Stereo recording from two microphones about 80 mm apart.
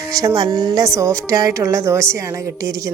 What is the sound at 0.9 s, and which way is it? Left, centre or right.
Speech, right.